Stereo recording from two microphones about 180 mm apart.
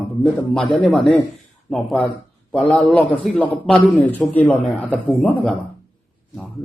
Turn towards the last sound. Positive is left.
turn(degrees=10)  # may be behind; listen again after turning